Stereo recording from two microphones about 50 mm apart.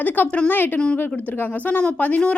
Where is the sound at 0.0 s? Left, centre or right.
Left.